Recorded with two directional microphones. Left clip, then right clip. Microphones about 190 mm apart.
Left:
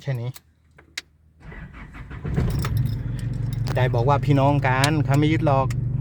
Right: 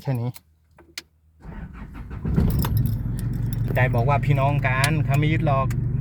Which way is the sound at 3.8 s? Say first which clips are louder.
Left 1 dB; 25° left (ahead or behind).